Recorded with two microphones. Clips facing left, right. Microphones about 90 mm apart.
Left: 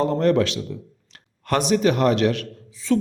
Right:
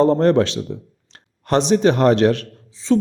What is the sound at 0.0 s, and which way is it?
A man's voice, 35° right (ahead or behind).